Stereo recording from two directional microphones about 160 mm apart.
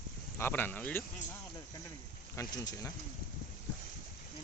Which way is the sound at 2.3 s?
25° left (ahead or behind).